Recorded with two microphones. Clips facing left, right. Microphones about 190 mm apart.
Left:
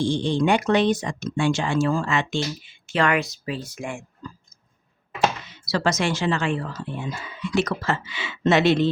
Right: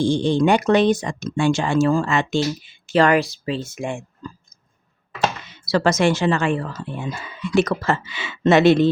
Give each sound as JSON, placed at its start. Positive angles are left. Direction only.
{"t": 0.0, "sound": "speech", "side_deg": -45}
{"t": 5.6, "sound": "speech", "side_deg": -55}